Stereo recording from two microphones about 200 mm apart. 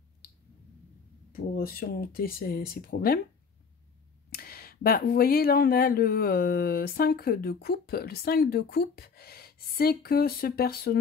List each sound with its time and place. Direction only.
0.2 s clicking: 50° left (ahead or behind)
1.3 s speech: 50° left (ahead or behind)
4.3 s speech: 50° left (ahead or behind)